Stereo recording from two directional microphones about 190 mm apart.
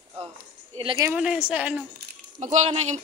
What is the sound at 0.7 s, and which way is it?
Speech, 30° right (ahead or behind).